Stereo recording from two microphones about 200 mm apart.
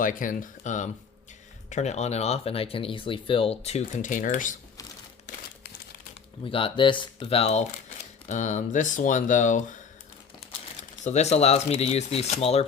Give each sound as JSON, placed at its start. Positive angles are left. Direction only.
{"t": 0.0, "sound": "speech", "side_deg": 40}
{"t": 6.4, "sound": "speech", "side_deg": 25}
{"t": 10.8, "sound": "speech", "side_deg": 35}